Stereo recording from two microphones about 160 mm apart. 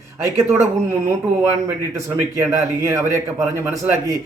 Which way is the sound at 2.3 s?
20° right (ahead or behind).